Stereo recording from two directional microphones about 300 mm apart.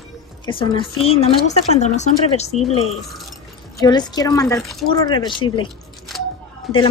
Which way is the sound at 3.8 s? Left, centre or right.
Centre.